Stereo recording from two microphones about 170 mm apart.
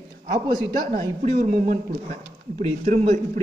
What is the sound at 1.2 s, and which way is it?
Speech, 45° right (ahead or behind).